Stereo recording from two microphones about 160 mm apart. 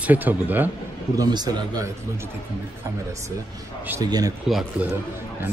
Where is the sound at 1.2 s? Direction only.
25° right (ahead or behind).